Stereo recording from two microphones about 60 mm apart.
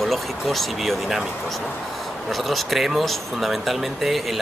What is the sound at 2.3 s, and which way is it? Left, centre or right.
Speech, centre.